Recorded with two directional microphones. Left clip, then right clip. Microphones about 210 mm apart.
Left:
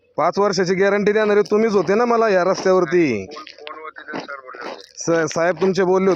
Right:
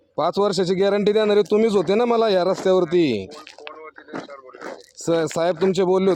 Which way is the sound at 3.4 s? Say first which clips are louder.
Left 3 dB; 20° right (ahead or behind).